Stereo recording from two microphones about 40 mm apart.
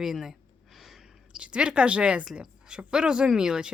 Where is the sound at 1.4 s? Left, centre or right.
Right.